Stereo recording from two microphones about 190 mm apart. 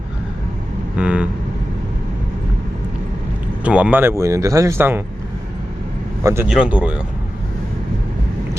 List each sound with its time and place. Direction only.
0.9 s vehicle: 5° right (ahead or behind)
3.6 s speech: 5° right (ahead or behind)
6.2 s speech: 15° right (ahead or behind)